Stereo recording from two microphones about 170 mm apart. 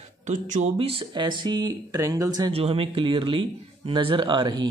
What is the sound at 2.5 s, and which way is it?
Speech, 35° right (ahead or behind).